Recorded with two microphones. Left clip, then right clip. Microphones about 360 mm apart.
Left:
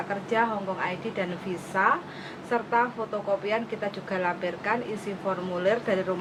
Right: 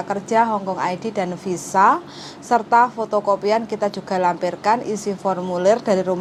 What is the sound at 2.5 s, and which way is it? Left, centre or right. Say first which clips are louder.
A woman's voice: right 10 dB; right.